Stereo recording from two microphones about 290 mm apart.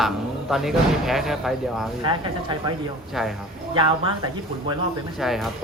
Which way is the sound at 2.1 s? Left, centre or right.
Centre.